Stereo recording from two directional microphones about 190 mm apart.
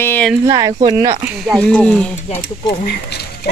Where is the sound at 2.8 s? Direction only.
55° left (ahead or behind).